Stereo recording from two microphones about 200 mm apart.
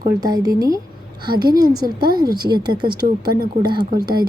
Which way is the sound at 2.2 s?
20° right (ahead or behind).